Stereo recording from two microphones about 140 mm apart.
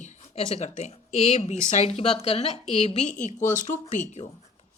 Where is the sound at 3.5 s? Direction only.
65° left (ahead or behind).